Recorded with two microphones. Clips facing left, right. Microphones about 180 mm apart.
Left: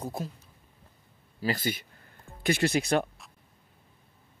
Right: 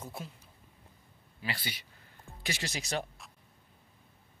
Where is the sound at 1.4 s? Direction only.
45° left (ahead or behind).